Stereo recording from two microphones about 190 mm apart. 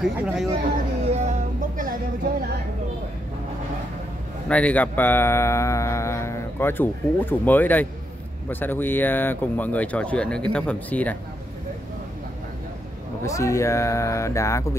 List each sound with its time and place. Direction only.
0.0 s speech: centre (ahead or behind)
1.1 s music: 40° right (ahead or behind)
4.5 s speech: 5° left (ahead or behind)
13.2 s speech: 15° left (ahead or behind)